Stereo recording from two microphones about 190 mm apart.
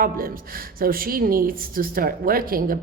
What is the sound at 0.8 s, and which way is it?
Speech, 50° right (ahead or behind).